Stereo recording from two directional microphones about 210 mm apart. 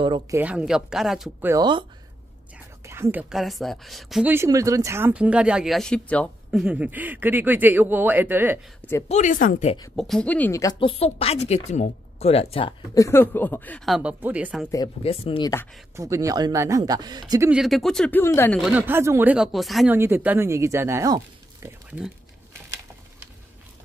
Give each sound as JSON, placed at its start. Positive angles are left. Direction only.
{"t": 0.0, "sound": "speech", "side_deg": -20}
{"t": 0.4, "sound": "speech", "side_deg": -5}
{"t": 1.5, "sound": "speech", "side_deg": -20}
{"t": 9.1, "sound": "speech", "side_deg": 40}
{"t": 9.9, "sound": "speech", "side_deg": 0}
{"t": 15.0, "sound": "speech", "side_deg": 25}
{"t": 16.0, "sound": "speech", "side_deg": -15}
{"t": 17.5, "sound": "speech", "side_deg": 0}
{"t": 18.6, "sound": "speech", "side_deg": -5}
{"t": 20.0, "sound": "a sound", "side_deg": -10}